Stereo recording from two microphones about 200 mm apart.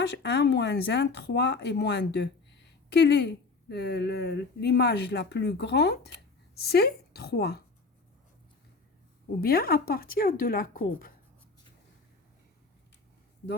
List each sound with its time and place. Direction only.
0.0 s speech: 60° left (ahead or behind)
9.4 s speech: 50° left (ahead or behind)